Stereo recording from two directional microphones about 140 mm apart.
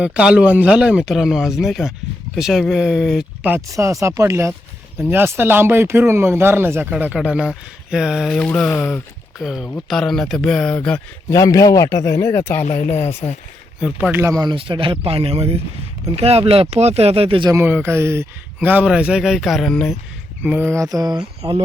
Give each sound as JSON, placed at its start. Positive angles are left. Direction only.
{"t": 0.0, "sound": "speech", "side_deg": -10}
{"t": 3.5, "sound": "speech", "side_deg": -20}
{"t": 9.4, "sound": "speech", "side_deg": -5}
{"t": 11.3, "sound": "speech", "side_deg": 25}
{"t": 12.6, "sound": "speech", "side_deg": 55}
{"t": 13.7, "sound": "speech", "side_deg": -5}
{"t": 14.1, "sound": "speech", "side_deg": -20}
{"t": 14.5, "sound": "speech", "side_deg": -40}
{"t": 17.5, "sound": "speech", "side_deg": -15}
{"t": 20.4, "sound": "speech", "side_deg": -15}